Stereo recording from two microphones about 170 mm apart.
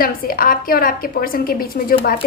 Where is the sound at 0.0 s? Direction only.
60° left (ahead or behind).